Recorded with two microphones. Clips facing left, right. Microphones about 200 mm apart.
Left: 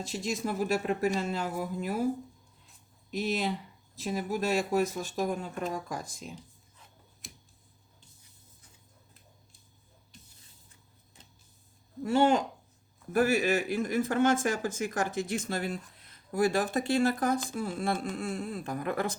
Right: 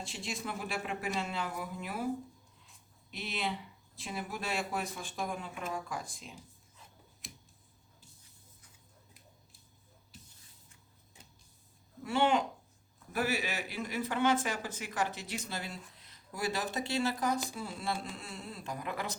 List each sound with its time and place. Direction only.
0.0 s speech: 40° left (ahead or behind)
3.1 s speech: 45° left (ahead or behind)
7.2 s tick-tock: centre (ahead or behind)
10.1 s spray: 5° right (ahead or behind)
12.0 s speech: 40° left (ahead or behind)